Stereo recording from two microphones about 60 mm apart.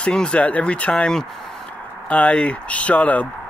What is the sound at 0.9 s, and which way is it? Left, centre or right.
Speech, centre.